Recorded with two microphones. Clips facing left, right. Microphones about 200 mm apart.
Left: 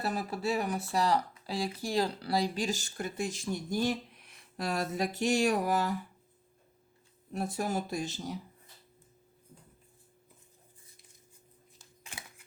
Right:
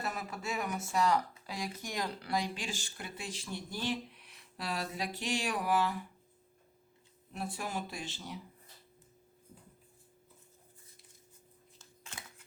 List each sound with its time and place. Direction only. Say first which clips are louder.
0.0 s speech: left 6 dB; 35° left (ahead or behind)
7.3 s speech: left 6 dB; 40° left (ahead or behind)
11.8 s a sound: left 1 dB; 15° left (ahead or behind)